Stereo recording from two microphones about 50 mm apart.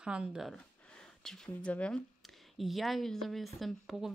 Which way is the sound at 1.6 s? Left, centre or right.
Left.